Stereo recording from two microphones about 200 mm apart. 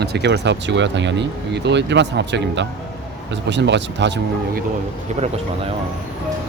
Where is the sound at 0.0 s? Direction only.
55° right (ahead or behind).